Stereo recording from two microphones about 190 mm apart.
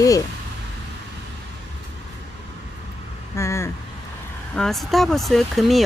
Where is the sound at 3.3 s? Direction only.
15° left (ahead or behind).